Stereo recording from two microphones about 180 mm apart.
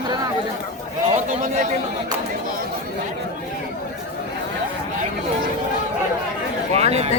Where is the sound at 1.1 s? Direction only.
45° right (ahead or behind).